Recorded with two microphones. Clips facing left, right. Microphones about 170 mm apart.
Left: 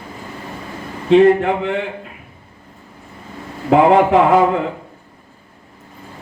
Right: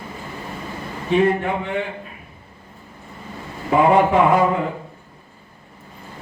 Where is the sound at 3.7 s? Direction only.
75° left (ahead or behind).